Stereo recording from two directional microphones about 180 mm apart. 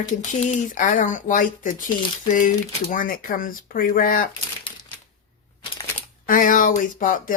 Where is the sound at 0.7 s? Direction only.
45° left (ahead or behind).